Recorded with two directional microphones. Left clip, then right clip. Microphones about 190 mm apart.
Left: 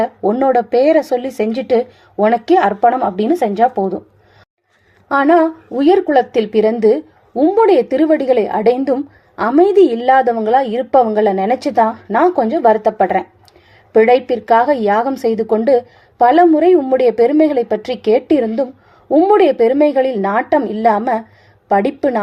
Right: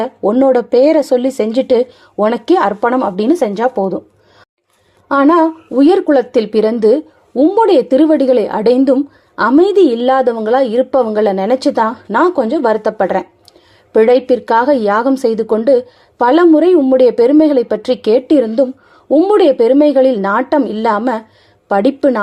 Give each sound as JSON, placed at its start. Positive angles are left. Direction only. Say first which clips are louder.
{"t": 0.2, "sound": "a woman's voice", "louder": "right 5 dB", "side_deg": -25}
{"t": 5.0, "sound": "a woman's voice", "louder": "right 1 dB", "side_deg": -25}